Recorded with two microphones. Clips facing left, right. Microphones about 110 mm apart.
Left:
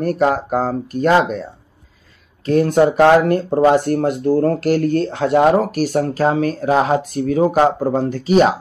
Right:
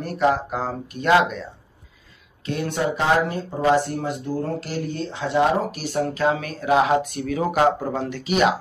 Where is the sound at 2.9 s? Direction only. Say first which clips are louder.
Left 7 dB; 60° left (ahead or behind).